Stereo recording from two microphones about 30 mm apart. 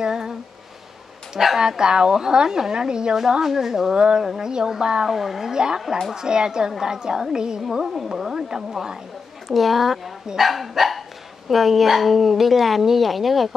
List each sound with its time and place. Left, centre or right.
0.0 s speech: centre
1.6 s a woman's voice: right
3.9 s speech: right
5.0 s a woman's voice: centre
5.5 s speech: right
7.8 s a woman's voice: centre
8.4 s speech: right
9.5 s a woman's voice: centre